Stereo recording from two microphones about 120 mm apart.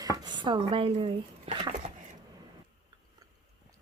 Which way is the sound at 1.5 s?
50° right (ahead or behind).